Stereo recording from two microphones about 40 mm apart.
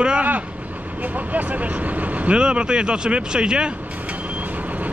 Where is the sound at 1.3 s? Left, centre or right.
Right.